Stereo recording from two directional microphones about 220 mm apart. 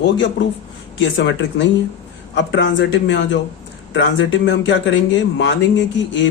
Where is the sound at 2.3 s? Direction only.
55° left (ahead or behind).